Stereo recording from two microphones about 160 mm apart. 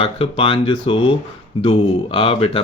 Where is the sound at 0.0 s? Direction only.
35° left (ahead or behind).